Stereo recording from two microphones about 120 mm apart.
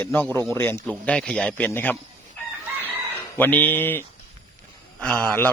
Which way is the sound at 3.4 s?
15° left (ahead or behind).